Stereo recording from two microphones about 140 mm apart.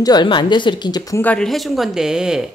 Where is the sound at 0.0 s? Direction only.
30° left (ahead or behind).